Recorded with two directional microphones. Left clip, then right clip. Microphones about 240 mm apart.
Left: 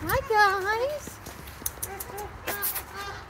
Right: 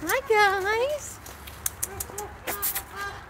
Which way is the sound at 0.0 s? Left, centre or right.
Right.